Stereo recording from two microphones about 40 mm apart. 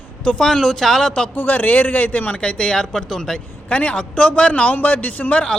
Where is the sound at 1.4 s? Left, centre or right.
Left; by 3.4 s centre.